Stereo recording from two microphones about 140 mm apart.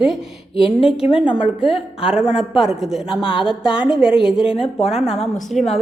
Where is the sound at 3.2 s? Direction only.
35° left (ahead or behind).